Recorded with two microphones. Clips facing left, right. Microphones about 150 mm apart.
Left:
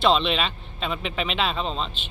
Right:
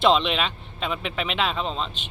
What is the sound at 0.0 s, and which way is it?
Speech, 15° right (ahead or behind).